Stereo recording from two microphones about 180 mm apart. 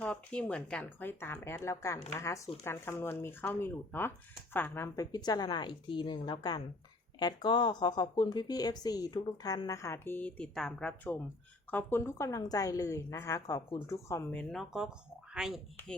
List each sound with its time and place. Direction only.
0.0 s a woman's voice: 5° left (ahead or behind)
14.3 s speech: centre (ahead or behind)